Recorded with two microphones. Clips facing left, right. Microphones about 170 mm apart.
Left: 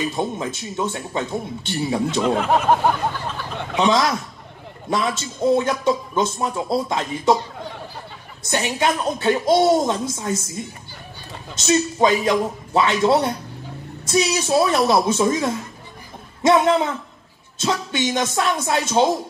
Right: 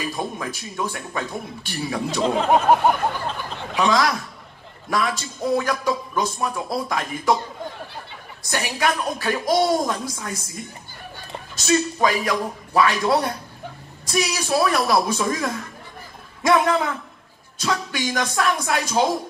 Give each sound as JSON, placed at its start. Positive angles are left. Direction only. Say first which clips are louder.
{"t": 0.0, "sound": "speech", "louder": "left 4 dB", "side_deg": 25}
{"t": 3.7, "sound": "speech", "louder": "left 2 dB", "side_deg": 25}
{"t": 8.5, "sound": "speech", "louder": "left 2 dB", "side_deg": 25}